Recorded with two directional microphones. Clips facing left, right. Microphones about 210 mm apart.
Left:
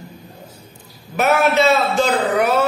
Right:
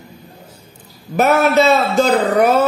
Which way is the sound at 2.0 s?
40° right (ahead or behind).